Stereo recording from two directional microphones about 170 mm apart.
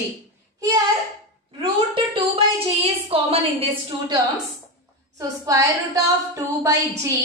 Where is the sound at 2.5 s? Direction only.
35° right (ahead or behind).